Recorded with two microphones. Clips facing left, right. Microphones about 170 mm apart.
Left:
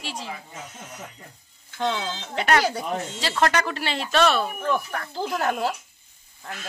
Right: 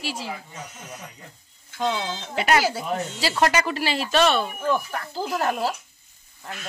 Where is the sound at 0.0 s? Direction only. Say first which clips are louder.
Right 3 dB; 5° right (ahead or behind).